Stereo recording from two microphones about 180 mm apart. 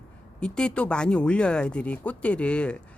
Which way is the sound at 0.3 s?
5° left (ahead or behind).